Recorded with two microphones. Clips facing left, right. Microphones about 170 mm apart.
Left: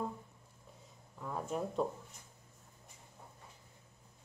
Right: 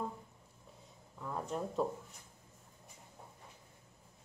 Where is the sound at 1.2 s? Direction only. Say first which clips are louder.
Left 1 dB; 5° left (ahead or behind).